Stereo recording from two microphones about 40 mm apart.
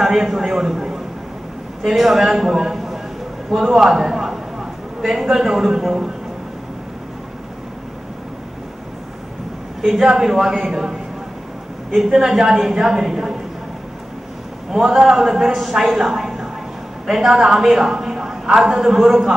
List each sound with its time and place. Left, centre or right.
0.0 s a man's voice: centre
9.8 s a man's voice: centre
14.7 s a woman's voice: centre
16.0 s a sound: centre
17.0 s a woman's voice: centre